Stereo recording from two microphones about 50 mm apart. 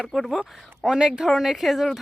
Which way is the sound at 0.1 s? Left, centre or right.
Centre.